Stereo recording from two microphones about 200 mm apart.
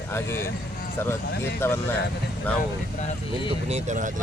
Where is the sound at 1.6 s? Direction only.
10° left (ahead or behind).